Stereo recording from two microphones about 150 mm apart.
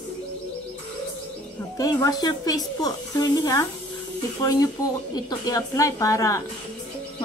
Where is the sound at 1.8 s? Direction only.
25° left (ahead or behind).